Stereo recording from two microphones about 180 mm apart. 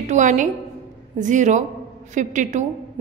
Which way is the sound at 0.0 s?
45° right (ahead or behind).